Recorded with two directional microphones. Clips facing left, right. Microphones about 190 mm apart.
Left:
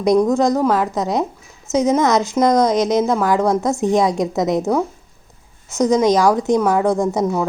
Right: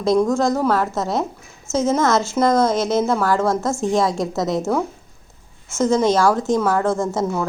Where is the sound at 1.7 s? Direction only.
15° left (ahead or behind).